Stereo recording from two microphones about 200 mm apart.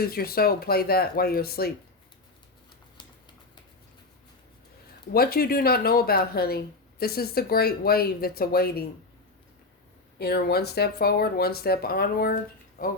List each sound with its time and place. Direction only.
0.0 s speech: 50° left (ahead or behind)
5.1 s speech: 50° left (ahead or behind)
10.2 s speech: 50° left (ahead or behind)